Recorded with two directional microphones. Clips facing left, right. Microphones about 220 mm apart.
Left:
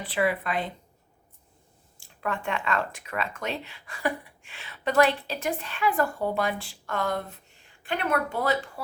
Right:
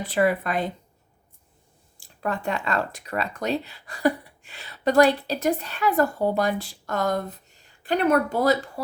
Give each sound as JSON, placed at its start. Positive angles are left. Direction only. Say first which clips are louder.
{"t": 0.0, "sound": "a woman's voice", "louder": "right 4 dB", "side_deg": -45}
{"t": 2.0, "sound": "speech", "louder": "right 3 dB", "side_deg": -35}